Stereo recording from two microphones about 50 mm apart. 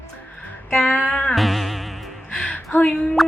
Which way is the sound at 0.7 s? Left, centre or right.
Left.